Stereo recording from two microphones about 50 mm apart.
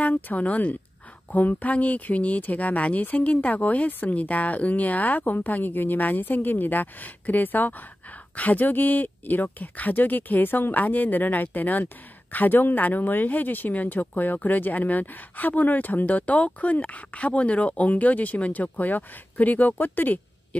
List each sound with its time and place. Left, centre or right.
0.0 s speech: left